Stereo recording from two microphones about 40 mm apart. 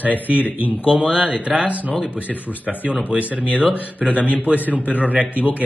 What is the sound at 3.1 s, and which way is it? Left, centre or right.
A man's voice, right.